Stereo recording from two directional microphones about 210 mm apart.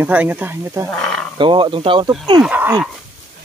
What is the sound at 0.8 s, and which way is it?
Speech, 5° left (ahead or behind).